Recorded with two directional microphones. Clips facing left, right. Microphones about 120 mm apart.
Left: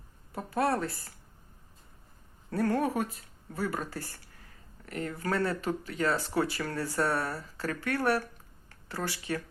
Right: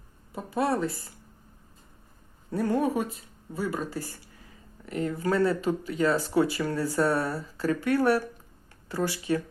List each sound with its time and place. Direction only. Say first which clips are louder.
0.3 s speech: right 2 dB; 10° right (ahead or behind)
2.5 s speech: right 2 dB; 15° right (ahead or behind)